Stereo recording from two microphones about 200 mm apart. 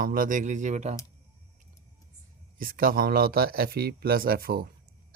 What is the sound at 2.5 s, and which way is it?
Speech, 45° right (ahead or behind).